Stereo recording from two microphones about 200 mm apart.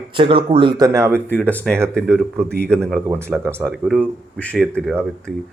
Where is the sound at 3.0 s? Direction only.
10° right (ahead or behind); by 4.7 s 5° left (ahead or behind).